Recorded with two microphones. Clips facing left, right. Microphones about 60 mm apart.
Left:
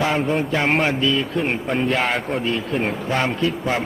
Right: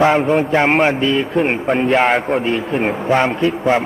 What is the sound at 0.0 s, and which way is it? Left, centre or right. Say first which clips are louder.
A man's voice: right 7 dB; right.